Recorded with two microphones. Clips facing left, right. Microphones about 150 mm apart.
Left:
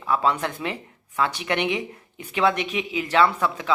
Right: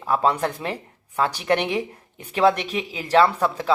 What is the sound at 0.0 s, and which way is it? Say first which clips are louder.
Speech: right 2 dB; 35° right (ahead or behind).